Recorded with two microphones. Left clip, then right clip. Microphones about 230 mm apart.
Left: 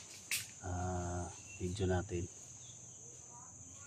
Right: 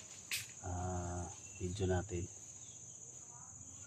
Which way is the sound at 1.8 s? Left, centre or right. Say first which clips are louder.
Left 1 dB; centre.